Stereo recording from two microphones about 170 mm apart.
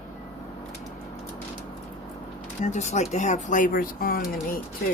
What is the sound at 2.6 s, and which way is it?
Speech, 45° left (ahead or behind).